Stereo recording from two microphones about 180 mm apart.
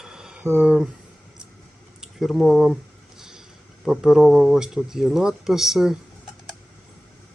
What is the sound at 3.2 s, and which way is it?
Vehicle, 5° right (ahead or behind).